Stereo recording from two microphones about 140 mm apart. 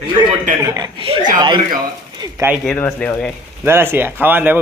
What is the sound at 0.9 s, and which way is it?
Speech, 40° right (ahead or behind).